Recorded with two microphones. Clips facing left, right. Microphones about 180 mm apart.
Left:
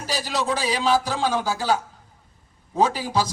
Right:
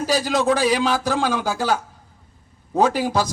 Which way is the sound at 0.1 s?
50° right (ahead or behind).